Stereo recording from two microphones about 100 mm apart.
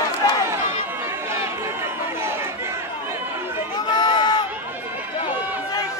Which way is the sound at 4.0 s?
50° left (ahead or behind).